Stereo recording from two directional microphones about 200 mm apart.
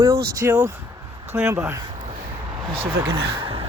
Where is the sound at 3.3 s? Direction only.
25° right (ahead or behind).